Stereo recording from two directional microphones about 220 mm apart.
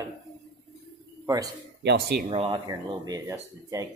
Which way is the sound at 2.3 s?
25° right (ahead or behind).